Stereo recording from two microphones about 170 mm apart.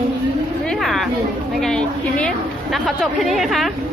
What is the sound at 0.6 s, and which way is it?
A woman's voice, centre (ahead or behind).